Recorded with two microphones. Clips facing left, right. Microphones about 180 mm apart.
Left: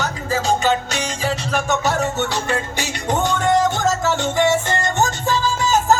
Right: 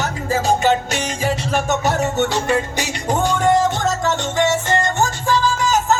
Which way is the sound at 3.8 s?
5° left (ahead or behind).